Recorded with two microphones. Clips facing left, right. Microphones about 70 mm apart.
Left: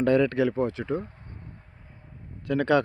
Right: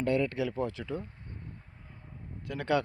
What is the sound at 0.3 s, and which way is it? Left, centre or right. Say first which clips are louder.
Speech: left 7 dB; left.